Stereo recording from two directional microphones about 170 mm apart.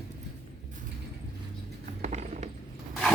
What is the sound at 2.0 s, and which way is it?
Mechanisms, 40° right (ahead or behind).